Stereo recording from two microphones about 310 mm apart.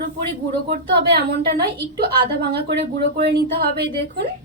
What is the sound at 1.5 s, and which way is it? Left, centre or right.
Speech, right.